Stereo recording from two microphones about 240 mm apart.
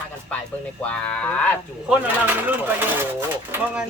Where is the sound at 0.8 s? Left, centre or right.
Centre.